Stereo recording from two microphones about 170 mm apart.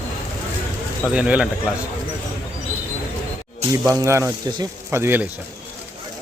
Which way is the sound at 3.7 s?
20° right (ahead or behind).